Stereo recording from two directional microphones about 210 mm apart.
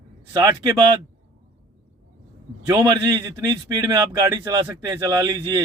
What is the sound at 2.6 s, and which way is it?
A man's voice, 15° right (ahead or behind).